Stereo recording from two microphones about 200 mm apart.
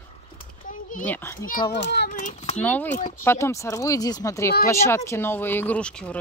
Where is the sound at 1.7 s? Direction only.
60° left (ahead or behind).